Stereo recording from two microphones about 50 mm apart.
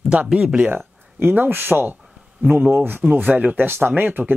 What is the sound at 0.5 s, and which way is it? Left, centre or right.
Speech, right.